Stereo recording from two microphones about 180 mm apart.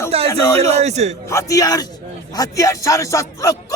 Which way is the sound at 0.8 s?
40° right (ahead or behind).